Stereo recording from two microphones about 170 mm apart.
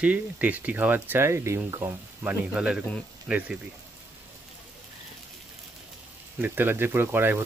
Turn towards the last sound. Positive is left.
turn(degrees=-10)  # may be behind; listen again after turning